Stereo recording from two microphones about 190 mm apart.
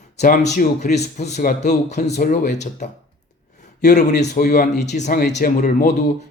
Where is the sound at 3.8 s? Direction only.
40° left (ahead or behind).